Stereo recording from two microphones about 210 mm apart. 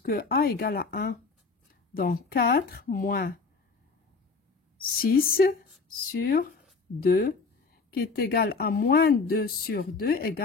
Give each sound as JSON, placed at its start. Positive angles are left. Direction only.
{"t": 0.0, "sound": "speech", "side_deg": 45}
{"t": 4.8, "sound": "speech", "side_deg": 45}